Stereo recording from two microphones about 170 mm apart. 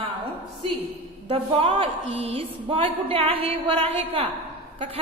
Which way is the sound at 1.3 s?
35° right (ahead or behind).